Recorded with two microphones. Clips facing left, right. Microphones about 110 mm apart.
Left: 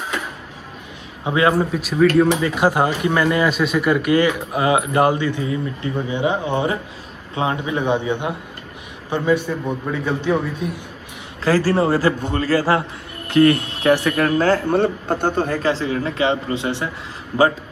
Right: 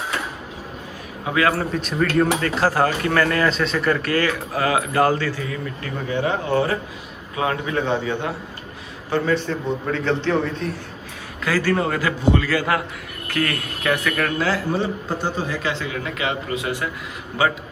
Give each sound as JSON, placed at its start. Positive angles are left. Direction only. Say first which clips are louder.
{"t": 1.2, "sound": "a man's voice", "louder": "left 3 dB", "side_deg": 25}
{"t": 1.7, "sound": "speech", "louder": "left 6 dB", "side_deg": 5}
{"t": 2.4, "sound": "a man's voice", "louder": "left 2 dB", "side_deg": 15}
{"t": 11.4, "sound": "speech", "louder": "left 4 dB", "side_deg": 35}
{"t": 12.2, "sound": "a man's voice", "louder": "even", "side_deg": 40}
{"t": 14.4, "sound": "a man's voice", "louder": "left 6 dB", "side_deg": 50}
{"t": 15.6, "sound": "speech", "louder": "left 6 dB", "side_deg": 35}